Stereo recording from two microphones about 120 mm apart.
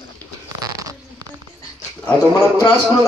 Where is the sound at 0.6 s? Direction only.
30° right (ahead or behind).